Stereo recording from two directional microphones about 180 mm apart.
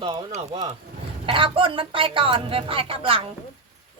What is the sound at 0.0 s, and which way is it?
Speech, 25° right (ahead or behind).